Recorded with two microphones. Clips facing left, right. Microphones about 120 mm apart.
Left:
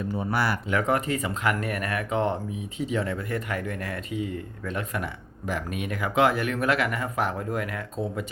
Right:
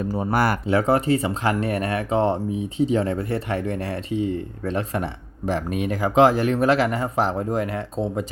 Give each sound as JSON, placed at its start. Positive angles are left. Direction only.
{"t": 0.0, "sound": "speech", "side_deg": -40}
{"t": 0.7, "sound": "speech", "side_deg": -35}